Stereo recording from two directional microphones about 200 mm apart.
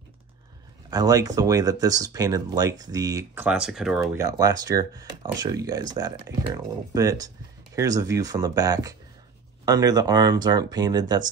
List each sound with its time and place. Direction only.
0.8 s speech: 20° right (ahead or behind)
3.4 s speech: 5° right (ahead or behind)
4.2 s speech: 20° right (ahead or behind)